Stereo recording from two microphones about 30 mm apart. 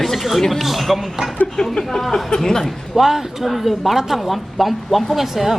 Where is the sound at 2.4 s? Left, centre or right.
Centre.